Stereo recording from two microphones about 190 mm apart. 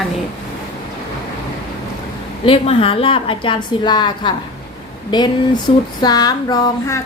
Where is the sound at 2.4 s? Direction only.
30° left (ahead or behind).